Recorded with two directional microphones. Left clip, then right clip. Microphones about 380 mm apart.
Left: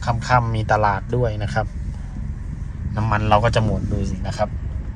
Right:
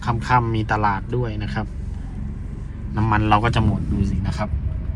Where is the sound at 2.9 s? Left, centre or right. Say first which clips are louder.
Even; centre.